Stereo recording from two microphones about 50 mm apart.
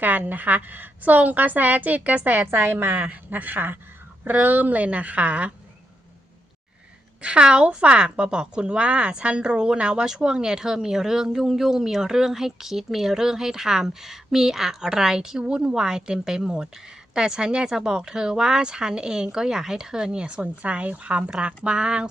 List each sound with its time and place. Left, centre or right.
0.0 s a woman's voice: right
2.9 s a woman's voice: right
7.2 s a woman's voice: right